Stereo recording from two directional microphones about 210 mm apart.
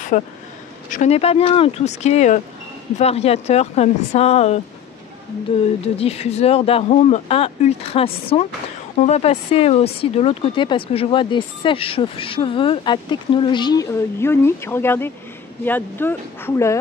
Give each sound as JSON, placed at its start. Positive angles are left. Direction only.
{"t": 0.1, "sound": "speech", "side_deg": 35}
{"t": 5.9, "sound": "speech", "side_deg": 30}